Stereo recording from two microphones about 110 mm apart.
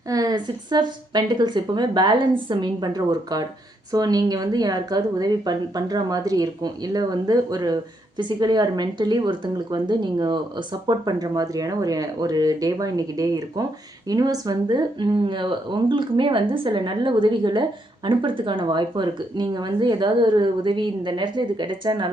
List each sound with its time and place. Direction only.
0.1 s speech: 35° right (ahead or behind)